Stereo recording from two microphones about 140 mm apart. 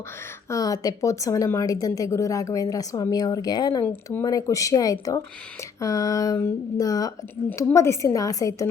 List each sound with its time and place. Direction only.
0.4 s a woman's voice: 25° left (ahead or behind)